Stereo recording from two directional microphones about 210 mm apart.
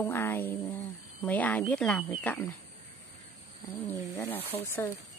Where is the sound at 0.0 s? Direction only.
10° left (ahead or behind).